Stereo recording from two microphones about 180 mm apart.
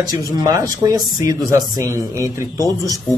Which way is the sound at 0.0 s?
20° right (ahead or behind).